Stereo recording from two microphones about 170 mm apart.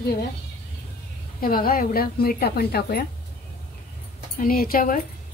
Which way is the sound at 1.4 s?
60° left (ahead or behind).